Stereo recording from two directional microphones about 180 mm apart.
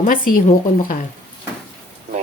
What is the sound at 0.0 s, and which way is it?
Speech, 50° left (ahead or behind).